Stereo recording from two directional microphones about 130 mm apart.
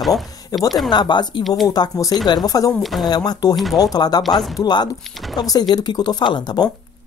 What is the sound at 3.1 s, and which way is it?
Speech, 30° left (ahead or behind).